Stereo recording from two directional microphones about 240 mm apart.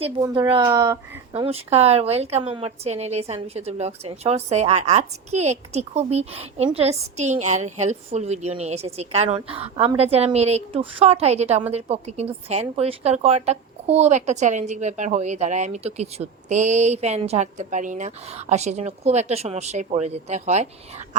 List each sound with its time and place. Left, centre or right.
0.0 s speech: centre